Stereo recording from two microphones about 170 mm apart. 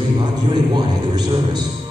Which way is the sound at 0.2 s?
25° right (ahead or behind).